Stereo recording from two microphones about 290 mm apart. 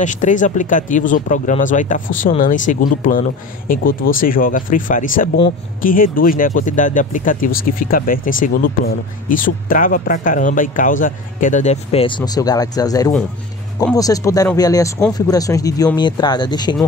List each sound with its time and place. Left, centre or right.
0.0 s speech: left